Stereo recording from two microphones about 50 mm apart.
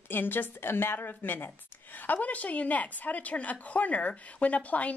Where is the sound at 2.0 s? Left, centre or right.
Left.